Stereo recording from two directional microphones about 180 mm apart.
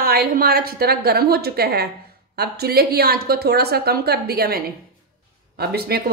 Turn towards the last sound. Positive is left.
turn(degrees=-60)  # may be behind; listen again after turning